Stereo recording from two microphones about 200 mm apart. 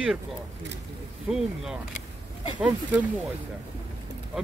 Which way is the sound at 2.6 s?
5° right (ahead or behind).